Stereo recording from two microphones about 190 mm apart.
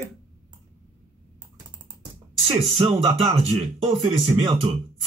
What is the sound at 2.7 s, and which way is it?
Speech, 35° right (ahead or behind).